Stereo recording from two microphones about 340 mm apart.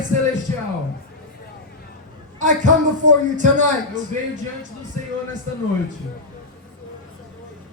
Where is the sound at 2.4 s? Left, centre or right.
Right.